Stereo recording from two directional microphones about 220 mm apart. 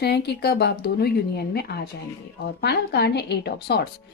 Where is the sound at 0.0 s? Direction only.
50° left (ahead or behind).